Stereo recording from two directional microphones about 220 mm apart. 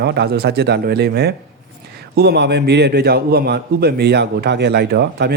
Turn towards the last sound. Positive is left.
turn(degrees=-50)  # may be behind; listen again after turning